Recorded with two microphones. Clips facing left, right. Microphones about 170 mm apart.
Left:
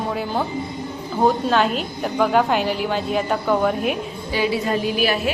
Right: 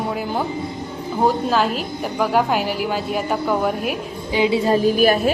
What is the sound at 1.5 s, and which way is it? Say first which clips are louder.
Speech: even; centre (ahead or behind).